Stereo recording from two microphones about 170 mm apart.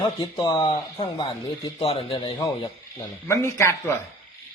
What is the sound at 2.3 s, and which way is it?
A man's voice, 20° left (ahead or behind).